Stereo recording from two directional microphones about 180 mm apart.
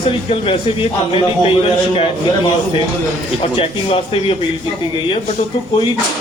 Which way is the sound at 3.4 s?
30° left (ahead or behind).